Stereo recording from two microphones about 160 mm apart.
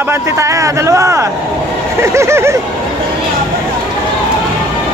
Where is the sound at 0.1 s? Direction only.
20° right (ahead or behind).